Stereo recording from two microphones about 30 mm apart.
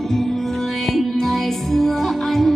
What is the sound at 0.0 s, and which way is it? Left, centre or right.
Music, centre.